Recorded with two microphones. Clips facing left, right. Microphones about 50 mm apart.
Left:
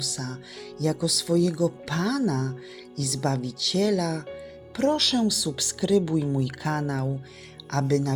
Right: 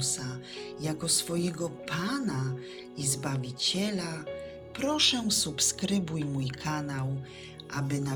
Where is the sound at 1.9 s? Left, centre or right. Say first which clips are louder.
Left 6 dB; centre.